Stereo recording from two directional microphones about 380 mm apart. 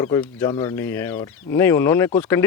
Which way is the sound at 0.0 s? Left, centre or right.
Centre.